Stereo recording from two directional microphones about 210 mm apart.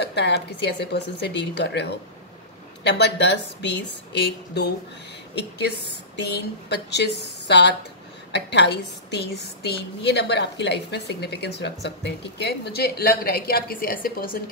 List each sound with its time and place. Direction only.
0.0 s a woman's voice: 50° left (ahead or behind)